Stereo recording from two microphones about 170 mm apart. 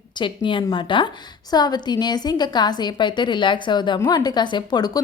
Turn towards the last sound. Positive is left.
turn(degrees=25)  # may be behind; listen again after turning